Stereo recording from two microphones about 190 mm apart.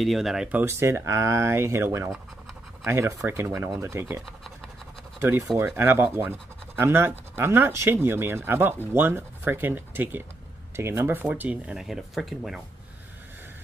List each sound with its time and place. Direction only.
0.0 s speech: centre (ahead or behind)
5.6 s speech: 10° right (ahead or behind)